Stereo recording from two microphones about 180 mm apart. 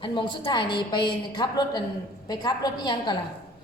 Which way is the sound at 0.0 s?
25° left (ahead or behind).